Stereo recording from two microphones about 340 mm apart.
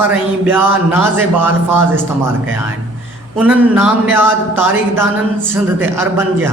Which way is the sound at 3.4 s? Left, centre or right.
Centre.